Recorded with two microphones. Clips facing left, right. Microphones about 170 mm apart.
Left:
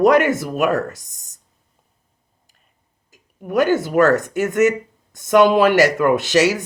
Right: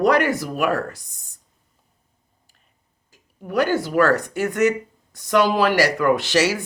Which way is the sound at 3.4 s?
20° left (ahead or behind).